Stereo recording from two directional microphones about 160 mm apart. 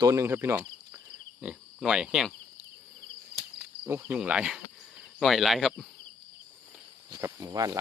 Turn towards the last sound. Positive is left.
turn(degrees=-20)  # may be behind; listen again after turning